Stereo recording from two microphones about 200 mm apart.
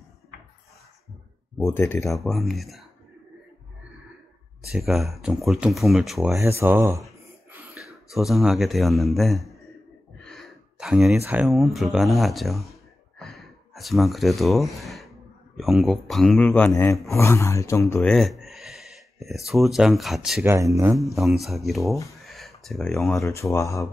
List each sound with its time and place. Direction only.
1.7 s speech: 10° left (ahead or behind)
2.0 s speech: centre (ahead or behind)
4.6 s speech: centre (ahead or behind)
6.3 s speech: 15° right (ahead or behind)
8.1 s speech: centre (ahead or behind)
10.1 s gasp: centre (ahead or behind)
11.1 s speech: 10° right (ahead or behind)
13.2 s gasp: centre (ahead or behind)
15.5 s speech: centre (ahead or behind)
18.1 s speech: centre (ahead or behind)
20.5 s speech: 15° right (ahead or behind)
21.0 s speech: centre (ahead or behind)
22.2 s a sound: centre (ahead or behind)
23.2 s speech: 15° left (ahead or behind)